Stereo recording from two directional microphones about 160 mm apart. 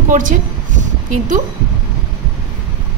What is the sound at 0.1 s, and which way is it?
Speech, 55° right (ahead or behind).